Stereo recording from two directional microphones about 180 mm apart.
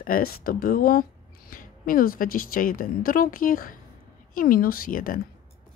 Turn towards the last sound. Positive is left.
turn(degrees=50)  # may be behind; listen again after turning